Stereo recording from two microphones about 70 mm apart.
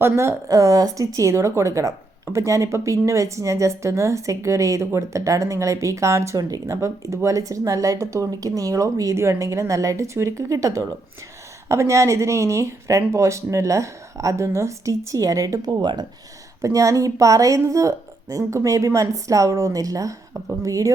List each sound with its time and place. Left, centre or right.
0.0 s a woman's voice: right
0.5 s speech: right
15.6 s speech: right
16.6 s speech: right